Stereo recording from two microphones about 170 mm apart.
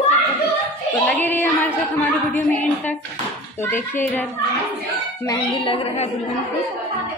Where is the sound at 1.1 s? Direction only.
10° left (ahead or behind).